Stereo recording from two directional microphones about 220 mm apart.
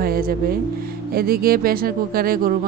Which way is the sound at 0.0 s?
40° right (ahead or behind).